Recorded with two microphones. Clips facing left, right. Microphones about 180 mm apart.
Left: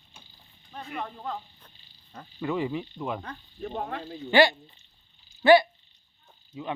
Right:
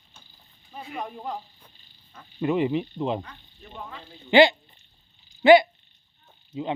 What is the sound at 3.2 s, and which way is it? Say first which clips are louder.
Speech: left 10 dB; 65° left (ahead or behind).